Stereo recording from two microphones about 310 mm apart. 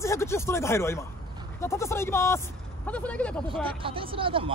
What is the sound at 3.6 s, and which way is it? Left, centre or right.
Speech, centre.